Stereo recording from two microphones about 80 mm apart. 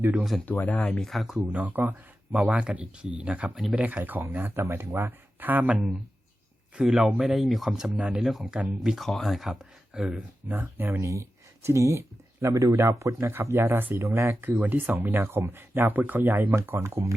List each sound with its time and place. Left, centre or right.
0.1 s speech: centre
0.4 s speech: left
0.8 s speech: centre
1.5 s speech: right
3.5 s speech: centre
3.8 s speech: centre
6.7 s speech: centre
7.9 s speech: centre
8.2 s speech: centre
10.5 s speech: right
11.0 s speech: right
14.4 s speech: right